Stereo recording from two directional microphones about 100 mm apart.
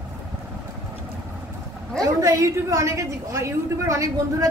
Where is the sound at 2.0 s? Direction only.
30° right (ahead or behind).